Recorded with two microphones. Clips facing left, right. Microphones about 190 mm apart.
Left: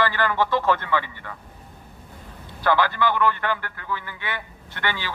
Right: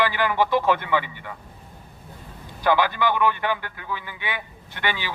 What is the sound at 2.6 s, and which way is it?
A man's voice, 15° right (ahead or behind).